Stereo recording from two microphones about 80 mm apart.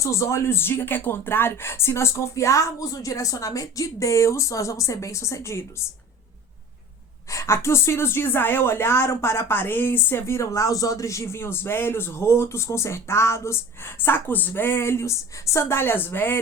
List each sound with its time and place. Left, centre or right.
0.0 s a woman's voice: left
7.3 s a woman's voice: left